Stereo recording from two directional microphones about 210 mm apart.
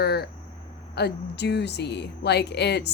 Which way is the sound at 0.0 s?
50° left (ahead or behind).